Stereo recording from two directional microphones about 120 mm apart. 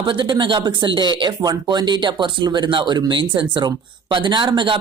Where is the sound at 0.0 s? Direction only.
40° right (ahead or behind).